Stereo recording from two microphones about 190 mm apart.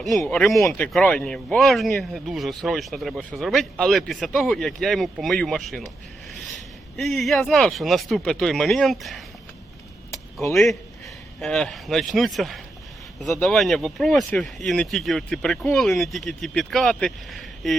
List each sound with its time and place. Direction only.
0.0 s speech: centre (ahead or behind)
10.5 s speech: centre (ahead or behind)